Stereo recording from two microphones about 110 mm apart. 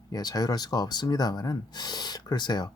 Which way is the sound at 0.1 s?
35° left (ahead or behind).